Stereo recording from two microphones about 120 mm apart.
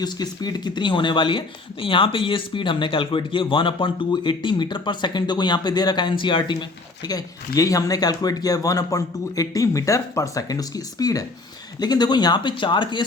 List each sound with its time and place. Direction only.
0.0 s speech: 35° left (ahead or behind)